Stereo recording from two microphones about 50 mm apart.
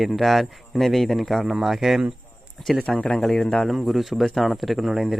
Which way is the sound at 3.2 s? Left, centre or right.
Centre.